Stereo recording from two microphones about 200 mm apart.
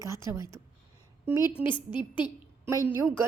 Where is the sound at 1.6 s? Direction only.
25° left (ahead or behind).